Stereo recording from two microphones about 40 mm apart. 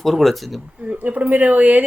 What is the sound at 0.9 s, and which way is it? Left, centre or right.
Speech, right.